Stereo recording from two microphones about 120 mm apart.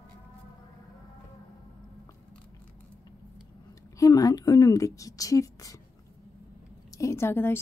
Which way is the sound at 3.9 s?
30° left (ahead or behind).